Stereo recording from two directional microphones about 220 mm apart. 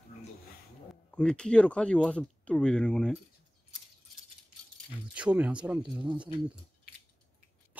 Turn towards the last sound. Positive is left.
turn(degrees=-5)  # may be behind; listen again after turning